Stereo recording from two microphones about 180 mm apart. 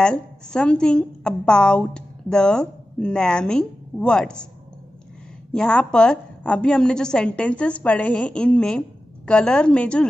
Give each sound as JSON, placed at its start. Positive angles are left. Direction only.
{"t": 0.0, "sound": "a woman's voice", "side_deg": 5}
{"t": 5.5, "sound": "a woman's voice", "side_deg": 5}